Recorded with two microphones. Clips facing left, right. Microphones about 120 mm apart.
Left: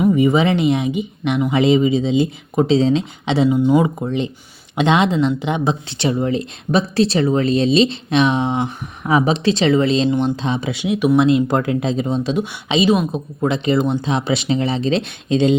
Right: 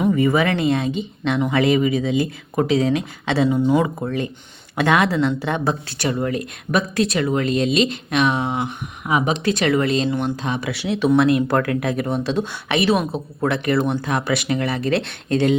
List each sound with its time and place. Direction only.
0.1 s speech: 20° left (ahead or behind)